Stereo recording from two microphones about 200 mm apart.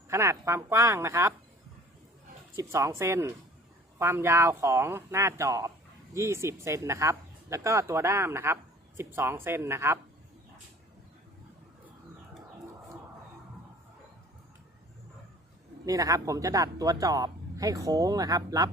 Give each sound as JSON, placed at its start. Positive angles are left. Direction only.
{"t": 0.1, "sound": "speech", "side_deg": -15}
{"t": 2.6, "sound": "speech", "side_deg": -15}
{"t": 15.9, "sound": "speech", "side_deg": -15}